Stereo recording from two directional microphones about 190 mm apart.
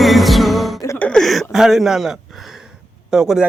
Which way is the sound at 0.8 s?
15° left (ahead or behind).